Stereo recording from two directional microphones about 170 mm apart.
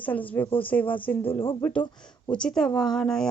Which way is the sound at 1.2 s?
30° left (ahead or behind).